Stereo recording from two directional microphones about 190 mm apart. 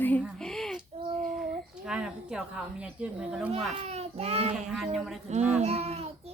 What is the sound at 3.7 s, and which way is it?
Child singing, 30° right (ahead or behind).